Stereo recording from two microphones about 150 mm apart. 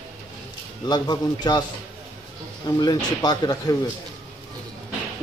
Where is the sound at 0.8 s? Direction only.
25° left (ahead or behind).